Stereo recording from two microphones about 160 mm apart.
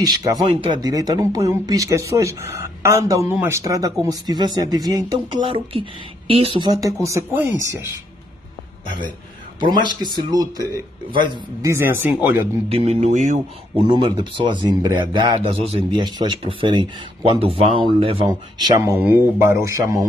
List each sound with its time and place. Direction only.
0.0 s speech: 25° right (ahead or behind)
5.5 s speech: 35° right (ahead or behind); by 7.8 s 15° right (ahead or behind)
8.8 s a man's voice: 55° left (ahead or behind)
9.6 s speech: 30° right (ahead or behind)
11.7 s speech: 15° right (ahead or behind)
12.6 s speech: 40° right (ahead or behind)
13.8 s speech: 30° right (ahead or behind)
18.3 s speech: 20° right (ahead or behind)